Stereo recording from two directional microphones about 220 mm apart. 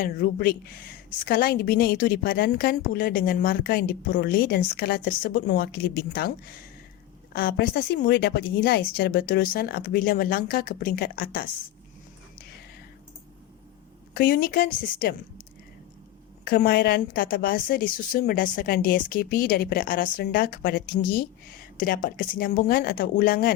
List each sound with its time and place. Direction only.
0.0 s a woman's voice: 45° left (ahead or behind)
7.3 s a woman's voice: 40° left (ahead or behind)
14.1 s a woman's voice: 40° left (ahead or behind)
16.4 s a woman's voice: 45° left (ahead or behind)